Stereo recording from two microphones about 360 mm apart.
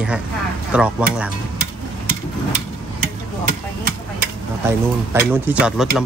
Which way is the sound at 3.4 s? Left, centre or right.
Right.